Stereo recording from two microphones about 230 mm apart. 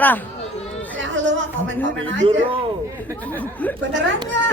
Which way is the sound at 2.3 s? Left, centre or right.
Right.